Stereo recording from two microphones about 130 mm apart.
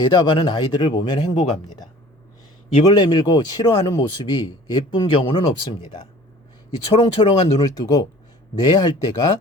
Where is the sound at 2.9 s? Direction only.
35° left (ahead or behind).